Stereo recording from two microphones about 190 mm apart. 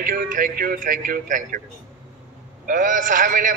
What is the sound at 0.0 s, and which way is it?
A man's voice, 45° right (ahead or behind).